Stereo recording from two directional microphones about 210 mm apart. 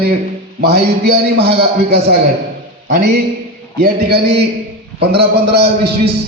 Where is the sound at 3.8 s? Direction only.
50° right (ahead or behind).